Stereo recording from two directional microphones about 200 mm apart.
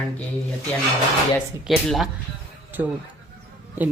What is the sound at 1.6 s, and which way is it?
A man's voice, centre (ahead or behind).